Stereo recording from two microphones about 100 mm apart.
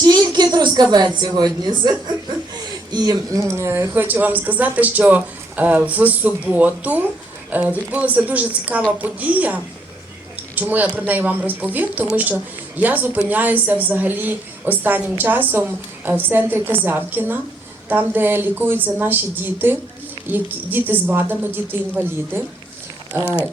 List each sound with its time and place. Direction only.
0.0 s a woman's voice: 45° right (ahead or behind)
3.4 s speech: 25° right (ahead or behind)